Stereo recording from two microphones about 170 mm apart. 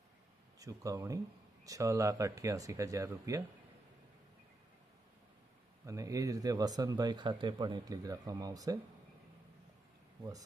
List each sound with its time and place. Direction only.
0.6 s speech: 20° right (ahead or behind)
5.8 s speech: 20° right (ahead or behind)